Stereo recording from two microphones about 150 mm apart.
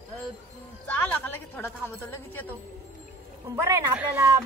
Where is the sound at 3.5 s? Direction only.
20° right (ahead or behind).